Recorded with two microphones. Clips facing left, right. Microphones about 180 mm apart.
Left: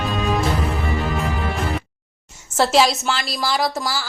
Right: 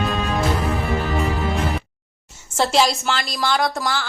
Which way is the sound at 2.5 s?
Centre (ahead or behind).